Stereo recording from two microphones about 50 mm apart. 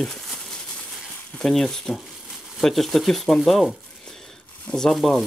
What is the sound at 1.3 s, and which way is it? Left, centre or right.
Speech, centre.